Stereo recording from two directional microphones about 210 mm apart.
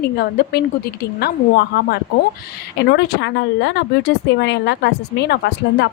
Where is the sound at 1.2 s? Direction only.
50° left (ahead or behind).